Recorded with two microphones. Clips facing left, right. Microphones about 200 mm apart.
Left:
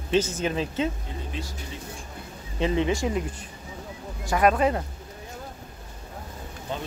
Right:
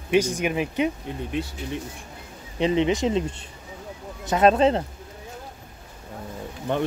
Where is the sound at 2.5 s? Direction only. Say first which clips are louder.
Right 3 dB; 20° right (ahead or behind).